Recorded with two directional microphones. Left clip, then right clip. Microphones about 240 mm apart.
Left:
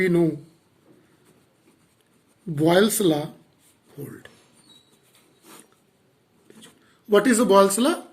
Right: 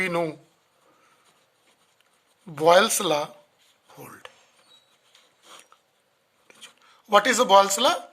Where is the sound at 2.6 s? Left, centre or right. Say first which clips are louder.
Right 2 dB; right.